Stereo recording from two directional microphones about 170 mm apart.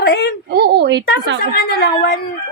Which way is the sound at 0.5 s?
75° right (ahead or behind).